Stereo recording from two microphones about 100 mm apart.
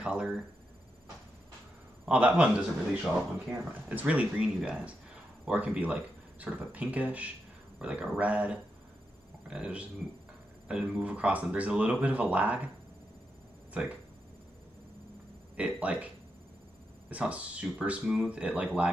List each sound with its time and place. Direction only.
0.0 s a sound: 10° right (ahead or behind)
2.0 s speech: 15° right (ahead or behind)
15.5 s speech: 15° right (ahead or behind)
17.1 s speech: 15° right (ahead or behind)